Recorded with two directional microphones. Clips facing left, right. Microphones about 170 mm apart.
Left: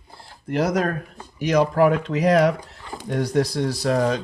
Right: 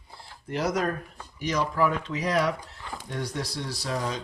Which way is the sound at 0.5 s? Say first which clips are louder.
Left 5 dB; 55° left (ahead or behind).